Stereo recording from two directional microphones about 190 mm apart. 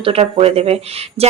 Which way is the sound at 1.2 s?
35° right (ahead or behind).